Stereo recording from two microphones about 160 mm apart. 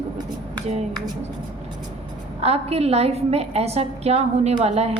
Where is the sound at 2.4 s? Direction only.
40° right (ahead or behind).